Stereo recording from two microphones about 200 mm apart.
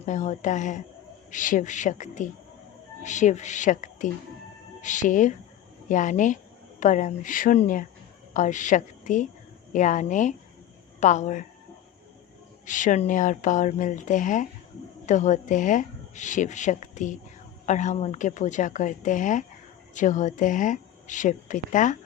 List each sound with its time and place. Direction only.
0.0 s a woman's voice: 40° left (ahead or behind)
12.6 s speech: 40° left (ahead or behind)